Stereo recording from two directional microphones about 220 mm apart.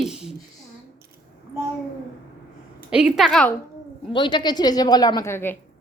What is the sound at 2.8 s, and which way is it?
Speech, 5° right (ahead or behind).